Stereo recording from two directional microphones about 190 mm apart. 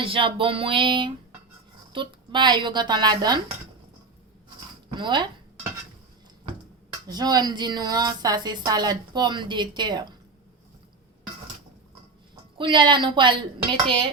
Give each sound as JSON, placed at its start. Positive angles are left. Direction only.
{"t": 0.0, "sound": "a woman's voice", "side_deg": -25}
{"t": 4.9, "sound": "a woman's voice", "side_deg": -25}
{"t": 7.1, "sound": "a woman's voice", "side_deg": -20}
{"t": 12.5, "sound": "a woman's voice", "side_deg": -25}